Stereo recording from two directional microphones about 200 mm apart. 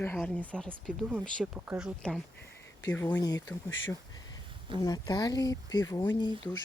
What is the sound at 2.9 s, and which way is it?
Speech, 15° left (ahead or behind).